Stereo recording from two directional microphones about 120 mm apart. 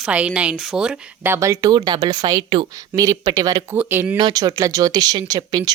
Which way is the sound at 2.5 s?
45° right (ahead or behind).